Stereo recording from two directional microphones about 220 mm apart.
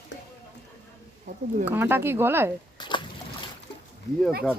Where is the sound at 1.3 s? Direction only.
35° right (ahead or behind).